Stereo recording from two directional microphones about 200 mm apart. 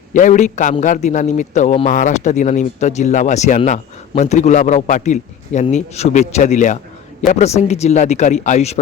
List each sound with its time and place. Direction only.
0.1 s a man's voice: 40° left (ahead or behind)